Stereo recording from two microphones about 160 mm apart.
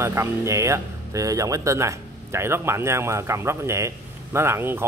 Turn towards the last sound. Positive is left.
turn(degrees=-15)  # may be behind; listen again after turning